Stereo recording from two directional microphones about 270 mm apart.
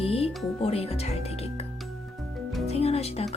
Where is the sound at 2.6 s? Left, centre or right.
Left.